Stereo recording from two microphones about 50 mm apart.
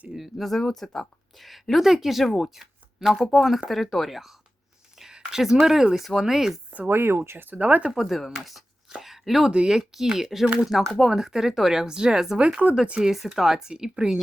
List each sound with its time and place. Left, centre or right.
0.1 s speech: centre
6.8 s speech: right
7.6 s speech: right
7.9 s speech: centre
8.9 s a sound: centre
9.5 s speech: centre
12.4 s speech: right
13.0 s speech: centre